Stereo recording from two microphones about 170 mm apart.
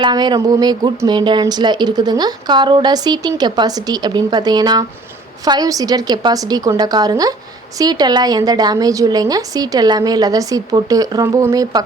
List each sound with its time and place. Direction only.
0.0 s speech: 25° right (ahead or behind)